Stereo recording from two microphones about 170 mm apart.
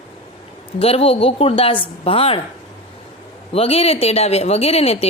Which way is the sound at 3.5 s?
35° left (ahead or behind).